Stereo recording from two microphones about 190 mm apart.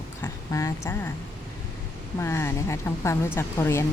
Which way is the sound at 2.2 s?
15° left (ahead or behind).